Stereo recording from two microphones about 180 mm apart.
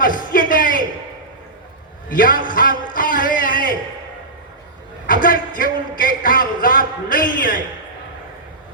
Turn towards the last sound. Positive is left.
turn(degrees=50)  # may be behind; listen again after turning